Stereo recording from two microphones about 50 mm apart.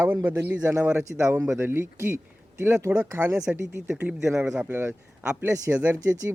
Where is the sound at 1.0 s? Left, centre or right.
Right.